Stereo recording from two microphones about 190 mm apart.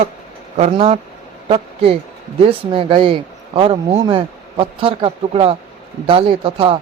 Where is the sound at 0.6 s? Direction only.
35° right (ahead or behind).